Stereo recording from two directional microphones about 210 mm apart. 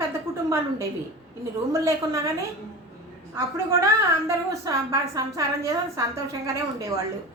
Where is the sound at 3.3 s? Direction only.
15° right (ahead or behind).